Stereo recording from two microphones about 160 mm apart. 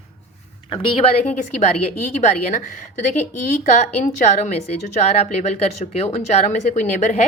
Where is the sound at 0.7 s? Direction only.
35° left (ahead or behind).